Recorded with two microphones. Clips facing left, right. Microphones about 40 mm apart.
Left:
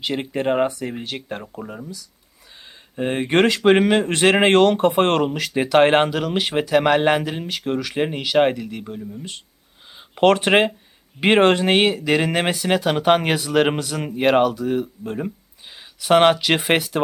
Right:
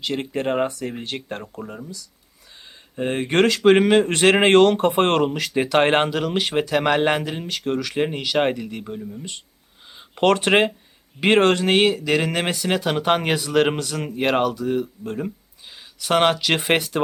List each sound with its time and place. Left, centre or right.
0.0 s speech: centre